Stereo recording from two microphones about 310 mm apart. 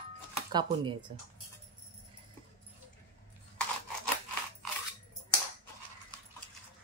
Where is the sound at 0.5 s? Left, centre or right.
Centre.